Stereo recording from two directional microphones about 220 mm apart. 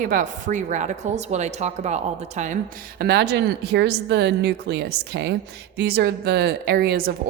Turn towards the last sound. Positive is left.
turn(degrees=-45)  # may be behind; listen again after turning